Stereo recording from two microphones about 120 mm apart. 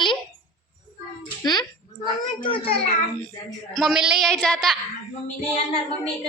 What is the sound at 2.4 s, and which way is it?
Speech, 50° left (ahead or behind).